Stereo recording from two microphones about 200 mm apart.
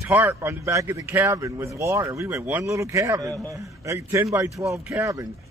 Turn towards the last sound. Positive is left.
turn(degrees=-15)  # may be behind; listen again after turning